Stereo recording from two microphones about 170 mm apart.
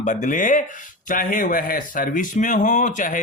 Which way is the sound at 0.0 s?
45° left (ahead or behind).